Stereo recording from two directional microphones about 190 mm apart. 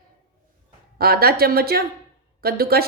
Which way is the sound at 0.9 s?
55° right (ahead or behind).